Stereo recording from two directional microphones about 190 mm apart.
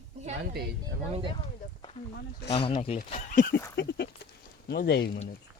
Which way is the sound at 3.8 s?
60° left (ahead or behind).